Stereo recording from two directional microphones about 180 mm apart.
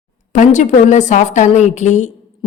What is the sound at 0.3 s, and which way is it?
A woman's voice, 40° left (ahead or behind).